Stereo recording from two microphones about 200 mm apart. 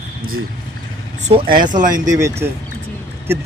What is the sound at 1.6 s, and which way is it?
Speech, 40° right (ahead or behind).